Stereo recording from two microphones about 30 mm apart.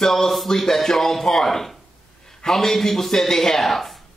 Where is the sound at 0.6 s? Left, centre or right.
Centre.